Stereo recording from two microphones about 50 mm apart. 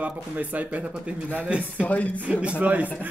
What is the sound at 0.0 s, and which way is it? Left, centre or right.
Speech, right.